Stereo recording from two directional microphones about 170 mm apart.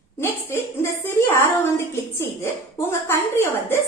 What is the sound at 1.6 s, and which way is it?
A woman's voice, 15° left (ahead or behind).